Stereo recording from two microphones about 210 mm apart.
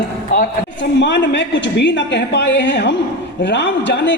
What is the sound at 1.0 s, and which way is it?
A woman's voice, 60° left (ahead or behind).